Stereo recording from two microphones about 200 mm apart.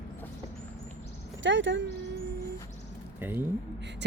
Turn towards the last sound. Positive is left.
turn(degrees=-10)  # may be behind; listen again after turning